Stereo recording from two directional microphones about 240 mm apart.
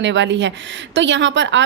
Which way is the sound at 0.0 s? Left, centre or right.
Right.